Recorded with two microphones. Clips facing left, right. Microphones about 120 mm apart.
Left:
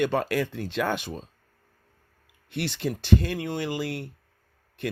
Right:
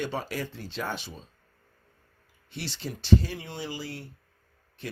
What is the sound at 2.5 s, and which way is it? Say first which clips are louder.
Speech: left 7 dB; 60° left (ahead or behind).